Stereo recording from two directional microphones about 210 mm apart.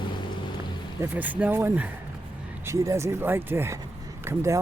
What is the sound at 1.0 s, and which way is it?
Speech, 10° right (ahead or behind).